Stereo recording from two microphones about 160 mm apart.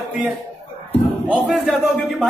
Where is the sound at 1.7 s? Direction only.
5° left (ahead or behind).